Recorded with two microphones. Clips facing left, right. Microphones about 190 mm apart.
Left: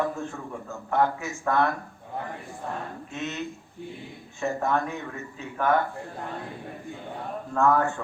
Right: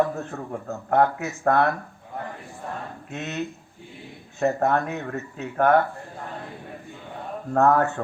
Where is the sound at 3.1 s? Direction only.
65° right (ahead or behind).